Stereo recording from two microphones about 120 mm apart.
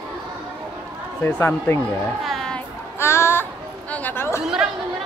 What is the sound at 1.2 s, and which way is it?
Speech, 20° left (ahead or behind).